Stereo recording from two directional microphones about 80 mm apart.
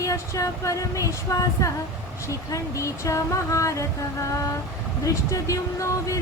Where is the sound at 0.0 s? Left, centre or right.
Left.